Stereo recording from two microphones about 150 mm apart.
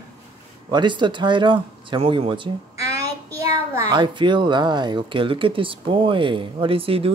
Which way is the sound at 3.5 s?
20° right (ahead or behind).